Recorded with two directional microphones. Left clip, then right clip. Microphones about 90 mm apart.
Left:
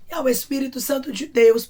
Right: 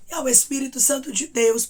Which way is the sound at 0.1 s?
30° right (ahead or behind).